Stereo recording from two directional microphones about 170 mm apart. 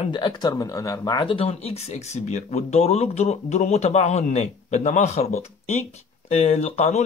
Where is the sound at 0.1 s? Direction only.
25° left (ahead or behind).